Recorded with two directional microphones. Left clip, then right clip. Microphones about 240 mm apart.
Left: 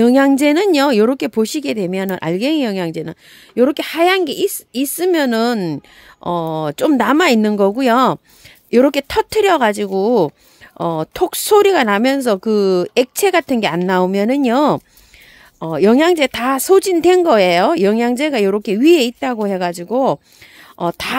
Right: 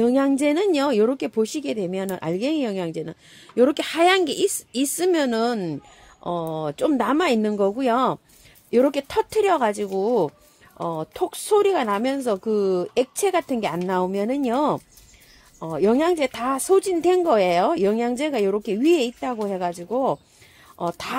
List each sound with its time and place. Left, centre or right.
0.0 s speech: left